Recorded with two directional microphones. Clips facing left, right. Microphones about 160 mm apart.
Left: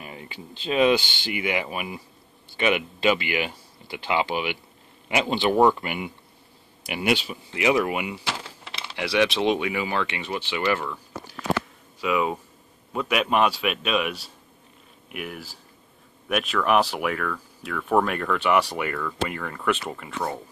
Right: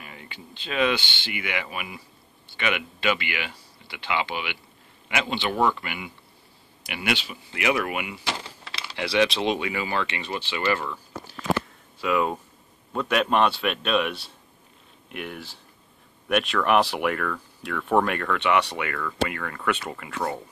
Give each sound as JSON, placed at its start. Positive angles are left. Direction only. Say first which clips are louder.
{"t": 0.0, "sound": "speech", "louder": "left 4 dB", "side_deg": 30}
{"t": 12.0, "sound": "speech", "louder": "even", "side_deg": 5}